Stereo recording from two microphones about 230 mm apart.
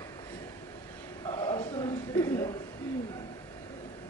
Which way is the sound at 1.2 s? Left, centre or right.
Centre.